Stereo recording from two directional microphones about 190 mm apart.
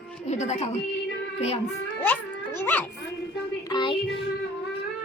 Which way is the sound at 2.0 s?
10° left (ahead or behind).